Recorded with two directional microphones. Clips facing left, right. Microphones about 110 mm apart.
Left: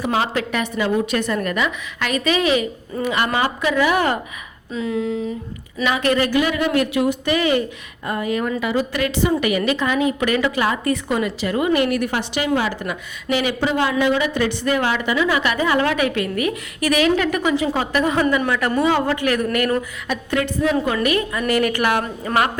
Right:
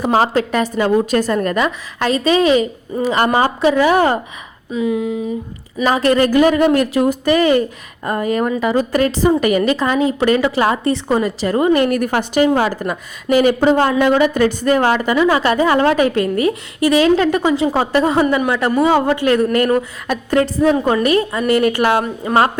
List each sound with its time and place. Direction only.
0.0 s a woman's voice: 35° right (ahead or behind)
4.7 s a sound: 15° right (ahead or behind)
5.8 s a woman's voice: 35° right (ahead or behind)